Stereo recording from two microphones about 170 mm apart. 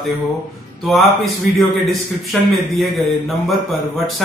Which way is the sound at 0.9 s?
Centre (ahead or behind).